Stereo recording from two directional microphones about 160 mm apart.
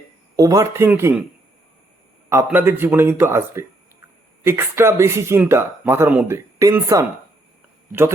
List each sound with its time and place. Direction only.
0.3 s speech: 20° right (ahead or behind)
2.3 s speech: 15° right (ahead or behind)